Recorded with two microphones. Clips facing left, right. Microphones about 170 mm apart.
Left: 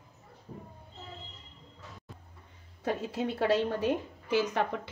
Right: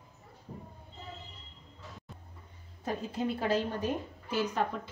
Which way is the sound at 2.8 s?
75° left (ahead or behind).